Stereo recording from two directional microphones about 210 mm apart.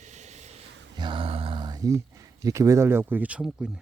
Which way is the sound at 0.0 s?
35° right (ahead or behind).